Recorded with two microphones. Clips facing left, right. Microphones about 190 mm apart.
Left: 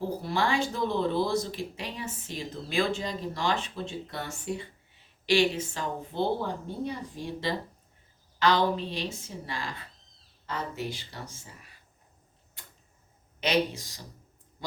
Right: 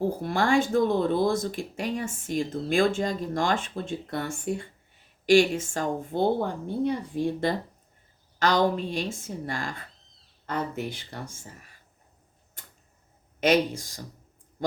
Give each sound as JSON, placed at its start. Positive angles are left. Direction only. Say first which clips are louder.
{"t": 0.0, "sound": "speech", "louder": "right 3 dB", "side_deg": -50}
{"t": 8.4, "sound": "speech", "louder": "right 2 dB", "side_deg": -45}
{"t": 13.4, "sound": "speech", "louder": "right 5 dB", "side_deg": -50}